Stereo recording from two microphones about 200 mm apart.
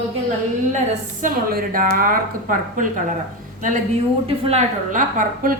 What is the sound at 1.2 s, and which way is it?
A woman's voice, 45° right (ahead or behind).